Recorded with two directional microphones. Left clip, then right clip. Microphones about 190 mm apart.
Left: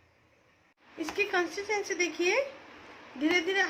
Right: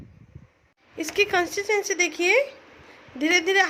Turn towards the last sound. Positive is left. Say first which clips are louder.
# right 7 dB
turn(degrees=-50)  # may be behind; listen again after turning